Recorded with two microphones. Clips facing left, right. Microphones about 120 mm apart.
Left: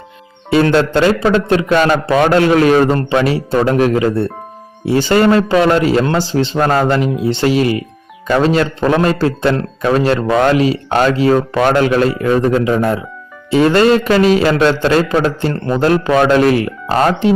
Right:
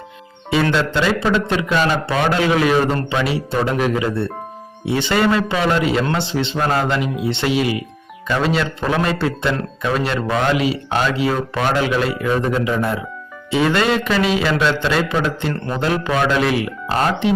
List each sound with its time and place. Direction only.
0.5 s a man's voice: 45° left (ahead or behind)